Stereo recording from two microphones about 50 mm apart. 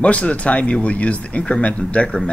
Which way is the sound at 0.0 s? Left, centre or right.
Left.